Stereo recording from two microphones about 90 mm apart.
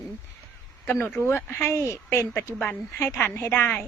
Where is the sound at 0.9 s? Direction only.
25° left (ahead or behind).